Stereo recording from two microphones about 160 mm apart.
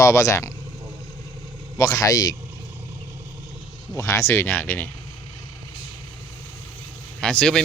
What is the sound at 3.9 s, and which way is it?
Speech, 20° left (ahead or behind).